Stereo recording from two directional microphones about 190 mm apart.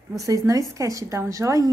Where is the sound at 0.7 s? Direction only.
15° right (ahead or behind).